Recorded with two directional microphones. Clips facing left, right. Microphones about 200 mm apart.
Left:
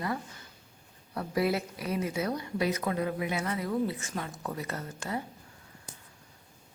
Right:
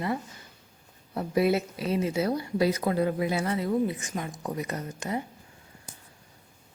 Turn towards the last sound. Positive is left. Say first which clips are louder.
# right 3 dB
turn(degrees=-20)  # may be behind; listen again after turning